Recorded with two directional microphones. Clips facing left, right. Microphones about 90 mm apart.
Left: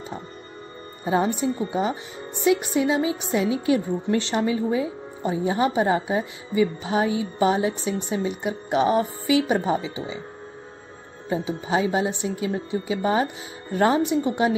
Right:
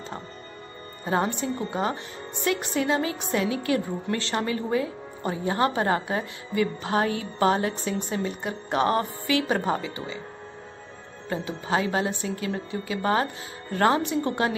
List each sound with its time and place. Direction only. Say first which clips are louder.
1.0 s a woman's voice: left 3 dB; 15° left (ahead or behind)
11.2 s a woman's voice: left 3 dB; 15° left (ahead or behind)